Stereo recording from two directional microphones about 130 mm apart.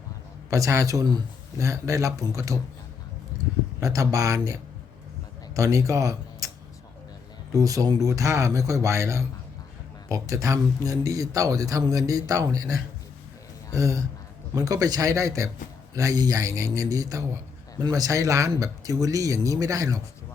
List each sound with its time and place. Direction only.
0.5 s speech: 25° right (ahead or behind)
3.8 s speech: 25° right (ahead or behind)
5.5 s speech: 25° right (ahead or behind)
7.5 s speech: 25° right (ahead or behind)